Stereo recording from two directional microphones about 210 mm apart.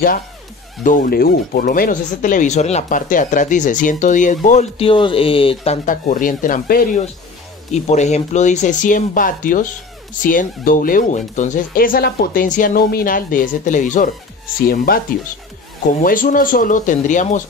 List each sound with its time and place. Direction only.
0.8 s speech: 40° left (ahead or behind)
16.0 s speech: 40° left (ahead or behind)